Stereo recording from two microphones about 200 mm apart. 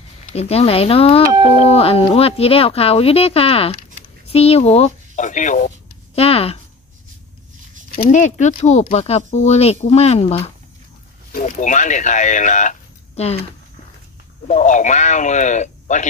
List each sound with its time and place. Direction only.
0.3 s speech: 30° left (ahead or behind)
6.1 s a sound: 30° left (ahead or behind)
8.0 s speech: 35° left (ahead or behind)
14.5 s speech: 35° left (ahead or behind)